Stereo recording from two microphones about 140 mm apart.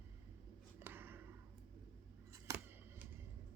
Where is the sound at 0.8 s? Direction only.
15° right (ahead or behind).